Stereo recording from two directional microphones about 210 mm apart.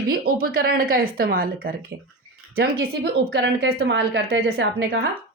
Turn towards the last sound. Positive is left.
turn(degrees=-45)  # may be behind; listen again after turning